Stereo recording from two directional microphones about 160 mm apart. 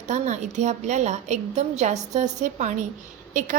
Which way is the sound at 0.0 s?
50° right (ahead or behind).